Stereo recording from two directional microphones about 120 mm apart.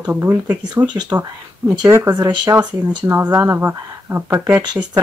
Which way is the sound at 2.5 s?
35° right (ahead or behind).